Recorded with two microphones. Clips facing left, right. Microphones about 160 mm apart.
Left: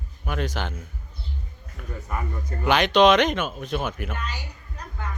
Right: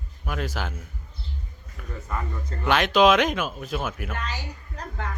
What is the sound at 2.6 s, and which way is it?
A man's voice, centre (ahead or behind).